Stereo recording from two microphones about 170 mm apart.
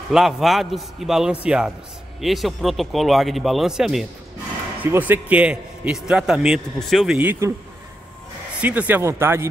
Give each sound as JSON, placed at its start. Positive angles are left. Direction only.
{"t": 0.1, "sound": "a man's voice", "side_deg": 0}
{"t": 7.2, "sound": "speech", "side_deg": -15}
{"t": 8.5, "sound": "speech", "side_deg": -10}